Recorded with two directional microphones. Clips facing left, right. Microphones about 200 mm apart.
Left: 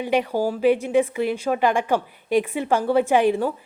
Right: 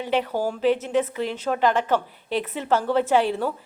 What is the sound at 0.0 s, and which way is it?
A woman's voice, 10° left (ahead or behind).